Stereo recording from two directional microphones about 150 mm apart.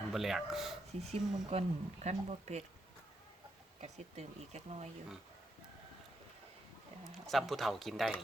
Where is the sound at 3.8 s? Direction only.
45° right (ahead or behind).